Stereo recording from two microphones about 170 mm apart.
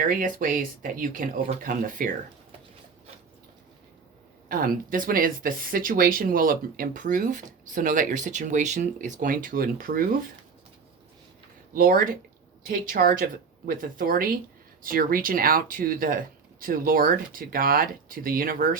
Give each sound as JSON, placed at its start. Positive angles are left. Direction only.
{"t": 0.0, "sound": "speech", "side_deg": -55}
{"t": 4.4, "sound": "speech", "side_deg": -55}
{"t": 11.7, "sound": "speech", "side_deg": -55}